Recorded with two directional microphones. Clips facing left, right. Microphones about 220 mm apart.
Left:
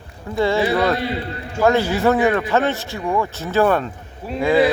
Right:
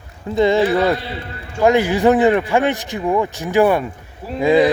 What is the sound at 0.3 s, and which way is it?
Speech, 20° right (ahead or behind).